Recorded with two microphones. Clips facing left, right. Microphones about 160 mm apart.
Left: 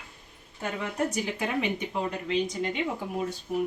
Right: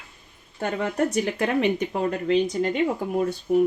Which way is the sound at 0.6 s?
65° right (ahead or behind).